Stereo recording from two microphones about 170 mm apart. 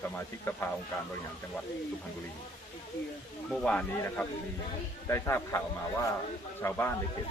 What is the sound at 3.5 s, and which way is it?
Speech, 5° left (ahead or behind).